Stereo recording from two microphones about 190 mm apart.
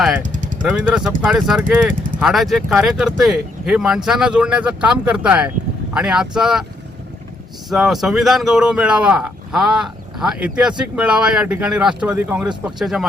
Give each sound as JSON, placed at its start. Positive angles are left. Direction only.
{"t": 0.3, "sound": "vehicle", "side_deg": -40}
{"t": 0.6, "sound": "speech", "side_deg": -5}
{"t": 7.7, "sound": "speech", "side_deg": 0}